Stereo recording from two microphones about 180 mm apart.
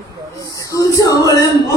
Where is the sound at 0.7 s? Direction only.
15° left (ahead or behind).